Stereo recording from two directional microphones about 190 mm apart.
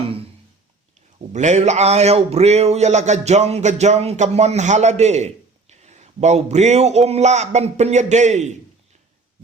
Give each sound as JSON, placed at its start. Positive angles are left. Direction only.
{"t": 1.3, "sound": "a man's voice", "side_deg": -40}